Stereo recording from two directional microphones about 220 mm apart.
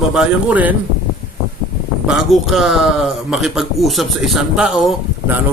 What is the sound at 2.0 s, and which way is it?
A man's voice, centre (ahead or behind).